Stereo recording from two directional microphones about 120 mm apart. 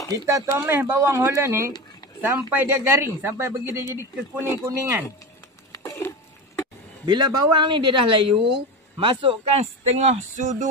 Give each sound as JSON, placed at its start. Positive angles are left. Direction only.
{"t": 0.3, "sound": "speech", "side_deg": -20}
{"t": 5.7, "sound": "a sound", "side_deg": 25}
{"t": 7.1, "sound": "speech", "side_deg": -40}